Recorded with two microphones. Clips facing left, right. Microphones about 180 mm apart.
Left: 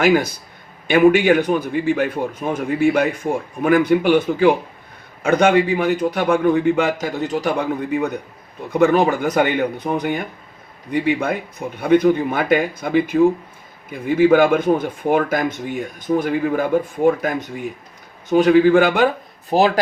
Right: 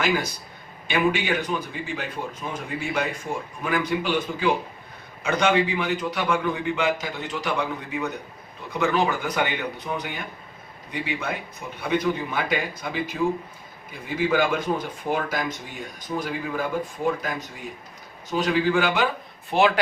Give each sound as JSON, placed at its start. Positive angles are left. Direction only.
{"t": 0.0, "sound": "a man's voice", "side_deg": 55}
{"t": 19.5, "sound": "speech", "side_deg": 40}